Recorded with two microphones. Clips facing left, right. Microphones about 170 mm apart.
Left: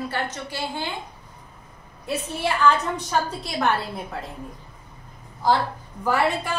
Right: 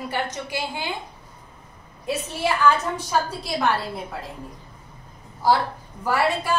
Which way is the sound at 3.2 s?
Centre (ahead or behind).